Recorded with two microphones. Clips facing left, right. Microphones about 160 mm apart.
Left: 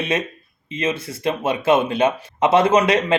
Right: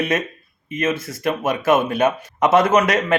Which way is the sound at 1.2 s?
25° left (ahead or behind).